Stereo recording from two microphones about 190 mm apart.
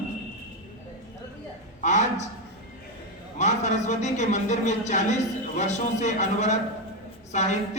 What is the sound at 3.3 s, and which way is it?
A man's voice, 40° left (ahead or behind).